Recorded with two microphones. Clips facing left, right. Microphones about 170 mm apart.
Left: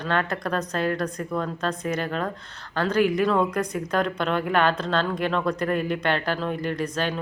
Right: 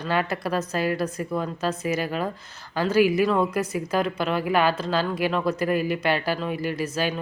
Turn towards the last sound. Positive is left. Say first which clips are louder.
# even
turn(degrees=-5)  # may be behind; listen again after turning